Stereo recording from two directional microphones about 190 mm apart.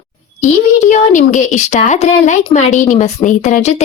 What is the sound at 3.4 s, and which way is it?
Speech, 35° left (ahead or behind).